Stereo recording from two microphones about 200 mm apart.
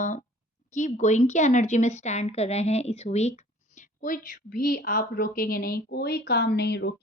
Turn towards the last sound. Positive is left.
turn(degrees=55)  # may be behind; listen again after turning